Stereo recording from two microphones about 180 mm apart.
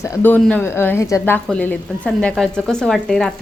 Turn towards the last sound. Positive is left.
turn(degrees=5)  # may be behind; listen again after turning